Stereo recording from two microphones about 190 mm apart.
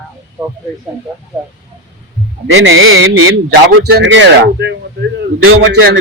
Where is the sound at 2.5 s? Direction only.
85° right.